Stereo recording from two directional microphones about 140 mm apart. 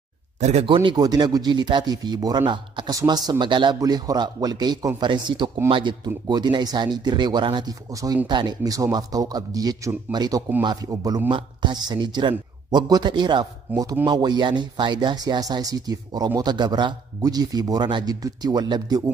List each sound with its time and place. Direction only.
0.4 s speech: 50° right (ahead or behind)
0.8 s a man's voice: 30° right (ahead or behind)